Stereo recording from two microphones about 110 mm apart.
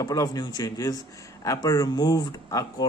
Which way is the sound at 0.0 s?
35° left (ahead or behind).